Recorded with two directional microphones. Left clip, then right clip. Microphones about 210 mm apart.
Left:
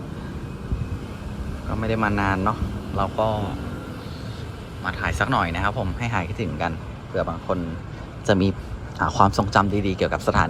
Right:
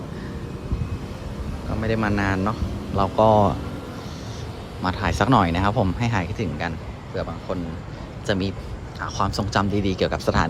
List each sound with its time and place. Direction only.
1.8 s speech: 10° right (ahead or behind)
4.8 s speech: 20° right (ahead or behind)